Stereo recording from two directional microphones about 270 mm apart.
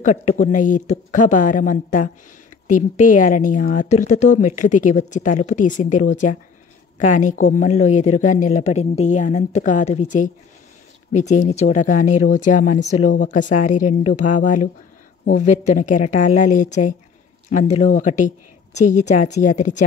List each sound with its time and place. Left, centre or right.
0.0 s a woman's voice: left